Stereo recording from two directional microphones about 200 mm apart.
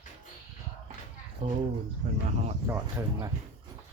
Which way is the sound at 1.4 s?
35° right (ahead or behind).